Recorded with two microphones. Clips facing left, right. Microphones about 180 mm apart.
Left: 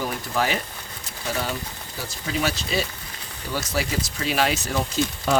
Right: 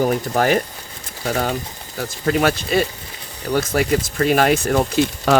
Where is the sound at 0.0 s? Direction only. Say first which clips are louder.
Right 8 dB; 45° right (ahead or behind).